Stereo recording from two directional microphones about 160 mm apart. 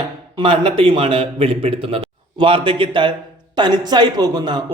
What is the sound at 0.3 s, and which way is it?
A man's voice, 30° right (ahead or behind).